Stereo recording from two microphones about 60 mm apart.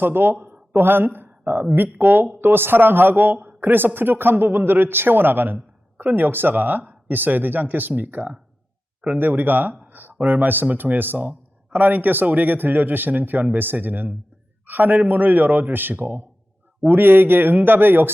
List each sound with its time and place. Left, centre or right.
0.0 s speech: right
9.8 s a sound: right
10.2 s a man's voice: right